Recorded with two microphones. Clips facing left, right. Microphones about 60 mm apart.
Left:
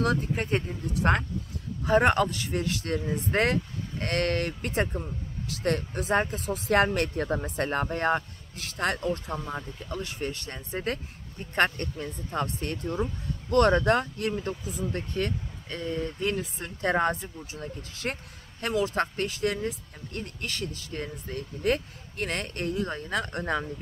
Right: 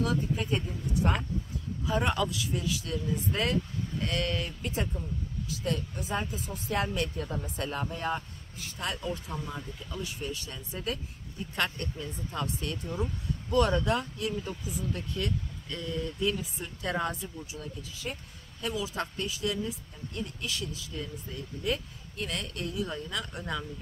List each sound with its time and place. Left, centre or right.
0.0 s speech: left
8.5 s speech: left
9.4 s speech: left
9.8 s speech: left
13.5 s speech: left
16.3 s speech: left